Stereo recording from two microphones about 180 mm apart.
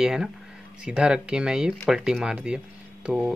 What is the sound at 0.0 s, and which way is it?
Speech, 5° right (ahead or behind).